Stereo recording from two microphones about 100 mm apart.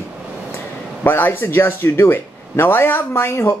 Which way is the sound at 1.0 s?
20° left (ahead or behind).